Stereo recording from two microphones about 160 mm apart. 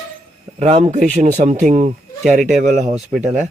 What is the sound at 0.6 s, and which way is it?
Speech, 40° right (ahead or behind).